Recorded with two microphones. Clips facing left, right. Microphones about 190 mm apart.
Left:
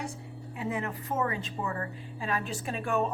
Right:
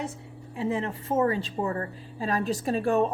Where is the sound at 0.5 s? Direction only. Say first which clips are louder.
Right 5 dB; 25° right (ahead or behind).